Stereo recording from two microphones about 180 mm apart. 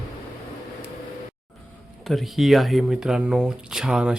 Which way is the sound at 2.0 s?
Centre (ahead or behind).